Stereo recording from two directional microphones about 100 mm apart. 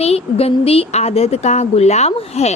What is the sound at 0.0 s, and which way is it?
Speech, 90° left.